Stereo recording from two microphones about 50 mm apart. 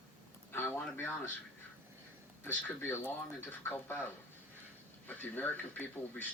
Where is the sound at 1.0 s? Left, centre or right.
Left.